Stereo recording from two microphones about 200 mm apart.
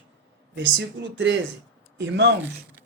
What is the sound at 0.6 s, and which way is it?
Speech, 60° right (ahead or behind).